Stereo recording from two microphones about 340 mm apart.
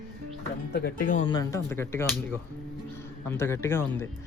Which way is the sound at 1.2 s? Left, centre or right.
Centre.